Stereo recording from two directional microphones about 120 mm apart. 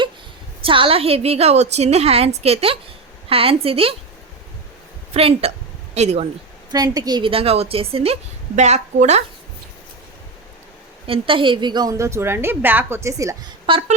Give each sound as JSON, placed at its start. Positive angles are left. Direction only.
{"t": 0.6, "sound": "a woman's voice", "side_deg": -45}
{"t": 5.1, "sound": "a woman's voice", "side_deg": -55}
{"t": 5.9, "sound": "a woman's voice", "side_deg": -65}
{"t": 6.7, "sound": "a woman's voice", "side_deg": -30}
{"t": 7.2, "sound": "a woman's voice", "side_deg": -50}
{"t": 11.0, "sound": "a woman's voice", "side_deg": -50}
{"t": 13.7, "sound": "a woman's voice", "side_deg": -45}